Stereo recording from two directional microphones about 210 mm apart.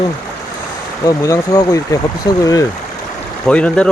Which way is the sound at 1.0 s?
15° left (ahead or behind).